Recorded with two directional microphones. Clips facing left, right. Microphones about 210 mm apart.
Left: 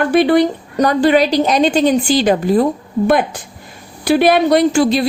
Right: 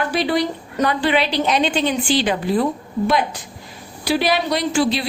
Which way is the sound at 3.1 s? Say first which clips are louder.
Left 6 dB; 55° left (ahead or behind).